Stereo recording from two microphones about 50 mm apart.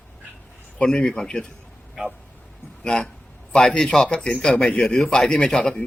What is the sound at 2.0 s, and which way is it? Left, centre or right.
Speech, centre.